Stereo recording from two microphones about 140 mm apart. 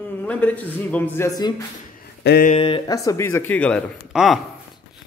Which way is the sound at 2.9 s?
20° left (ahead or behind).